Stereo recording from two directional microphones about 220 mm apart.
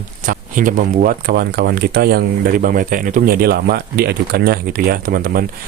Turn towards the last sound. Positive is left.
turn(degrees=-40)  # may be behind; listen again after turning